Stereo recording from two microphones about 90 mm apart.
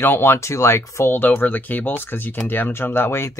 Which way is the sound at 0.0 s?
25° left (ahead or behind).